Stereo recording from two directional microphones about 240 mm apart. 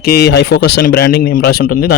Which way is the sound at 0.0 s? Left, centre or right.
Left.